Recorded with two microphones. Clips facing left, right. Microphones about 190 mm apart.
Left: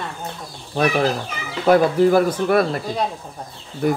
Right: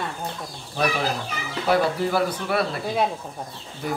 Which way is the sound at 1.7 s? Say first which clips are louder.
Left 7 dB; 50° left (ahead or behind).